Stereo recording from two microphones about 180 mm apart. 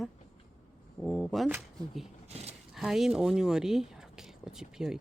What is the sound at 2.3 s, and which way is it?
Speech, 35° right (ahead or behind).